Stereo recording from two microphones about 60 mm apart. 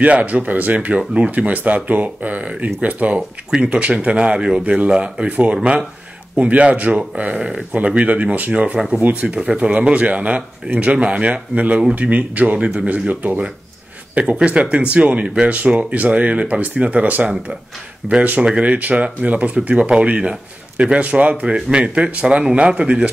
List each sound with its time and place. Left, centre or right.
0.0 s a man's voice: right
14.2 s a man's voice: centre